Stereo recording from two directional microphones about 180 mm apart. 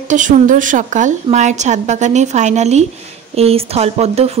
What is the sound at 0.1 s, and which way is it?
A woman's voice, 45° right (ahead or behind).